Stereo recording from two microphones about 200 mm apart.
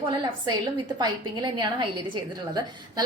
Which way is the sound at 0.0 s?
20° right (ahead or behind).